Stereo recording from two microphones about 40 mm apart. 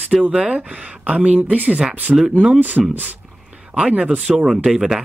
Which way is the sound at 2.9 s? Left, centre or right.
Right.